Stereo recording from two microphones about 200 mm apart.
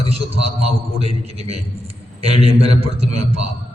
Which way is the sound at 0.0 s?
30° right (ahead or behind).